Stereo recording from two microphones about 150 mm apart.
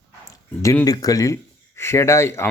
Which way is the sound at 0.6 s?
20° left (ahead or behind).